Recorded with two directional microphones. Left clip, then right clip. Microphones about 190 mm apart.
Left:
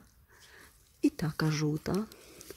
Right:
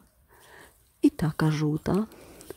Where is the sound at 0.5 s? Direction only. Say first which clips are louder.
Right 5 dB; 15° right (ahead or behind).